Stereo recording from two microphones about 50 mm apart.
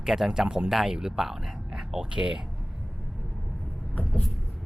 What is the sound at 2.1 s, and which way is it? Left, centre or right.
Speech, centre.